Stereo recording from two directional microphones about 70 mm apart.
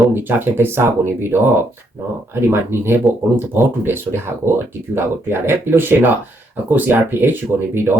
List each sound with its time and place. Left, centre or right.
0.1 s speech: right